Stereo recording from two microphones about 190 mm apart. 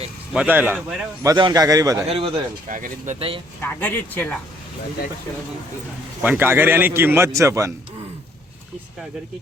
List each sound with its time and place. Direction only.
0.3 s a man's voice: 10° right (ahead or behind)
1.2 s a man's voice: 20° right (ahead or behind)
2.0 s speech: 30° right (ahead or behind)
3.2 s speech: 30° right (ahead or behind)
3.6 s speech: 10° left (ahead or behind)
6.2 s a man's voice: 10° right (ahead or behind)